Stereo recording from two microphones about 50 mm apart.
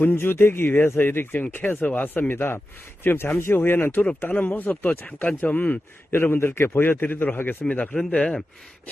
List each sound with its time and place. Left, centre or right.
0.0 s a man's voice: left
4.0 s speech: left
6.3 s a man's voice: left
7.6 s speech: left
8.1 s speech: centre